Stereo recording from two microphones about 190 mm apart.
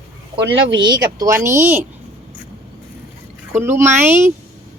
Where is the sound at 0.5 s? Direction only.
90° right.